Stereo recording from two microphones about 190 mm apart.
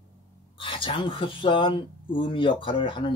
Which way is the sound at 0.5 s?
25° left (ahead or behind).